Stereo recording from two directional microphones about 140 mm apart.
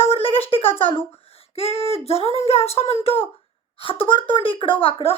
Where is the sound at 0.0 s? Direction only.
45° left (ahead or behind).